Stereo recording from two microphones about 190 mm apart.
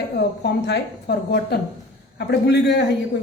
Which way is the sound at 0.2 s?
65° left (ahead or behind).